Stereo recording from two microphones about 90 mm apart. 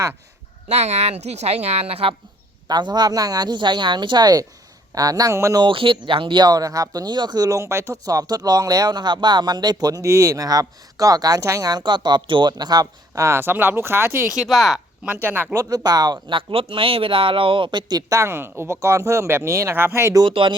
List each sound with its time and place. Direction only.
1.9 s speech: 90° right
2.6 s speech: 55° right (ahead or behind); by 5.5 s 35° right (ahead or behind)
5.5 s speech: 70° right (ahead or behind); by 11.8 s 40° right (ahead or behind)
11.8 s speech: 60° right (ahead or behind)
13.2 s speech: 25° right (ahead or behind)
14.3 s speech: centre (ahead or behind)
15.0 s speech: 20° right (ahead or behind)
15.5 s speech: 45° right (ahead or behind)
16.3 s a man's voice: 85° right; by 18.0 s 55° right (ahead or behind)
18.1 s speech: 30° right (ahead or behind)
20.2 s speech: 65° right (ahead or behind)